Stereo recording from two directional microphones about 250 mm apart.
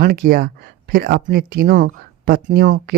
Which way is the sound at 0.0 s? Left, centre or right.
Right.